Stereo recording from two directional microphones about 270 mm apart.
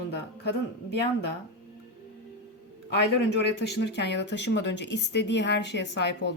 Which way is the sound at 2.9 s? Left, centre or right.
Left.